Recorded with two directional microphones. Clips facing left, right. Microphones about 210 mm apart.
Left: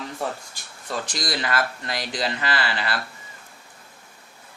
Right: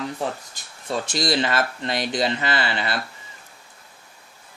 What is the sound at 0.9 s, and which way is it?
Speech, 25° right (ahead or behind).